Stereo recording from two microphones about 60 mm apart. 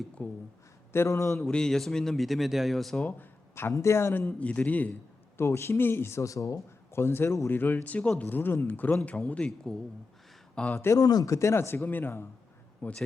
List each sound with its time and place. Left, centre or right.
0.2 s a man's voice: left
0.9 s speech: left
1.4 s a man's voice: centre
3.1 s a sound: left
3.7 s speech: left
4.3 s a man's voice: left
5.4 s speech: left
6.2 s speech: left
6.9 s a man's voice: left
10.5 s speech: centre
10.9 s speech: left
11.3 s a man's voice: left